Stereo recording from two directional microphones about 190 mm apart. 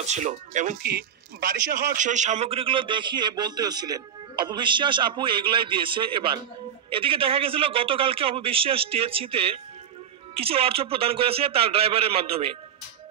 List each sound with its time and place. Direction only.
0.0 s a man's voice: 35° right (ahead or behind)
0.8 s a man's voice: 55° right (ahead or behind); by 12.4 s 30° right (ahead or behind)